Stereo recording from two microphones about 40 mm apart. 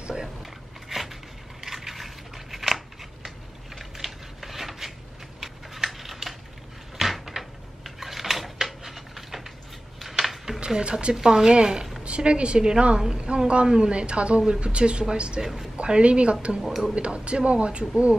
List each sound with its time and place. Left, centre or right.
0.0 s a sound: centre
0.4 s a sound: centre
5.9 s typing: centre
7.0 s cupboard open or close: centre
9.9 s a sound: centre
10.8 s a woman's voice: right
11.1 s speech: centre
12.0 s a woman's voice: right
16.6 s speech: centre
16.9 s a woman's voice: right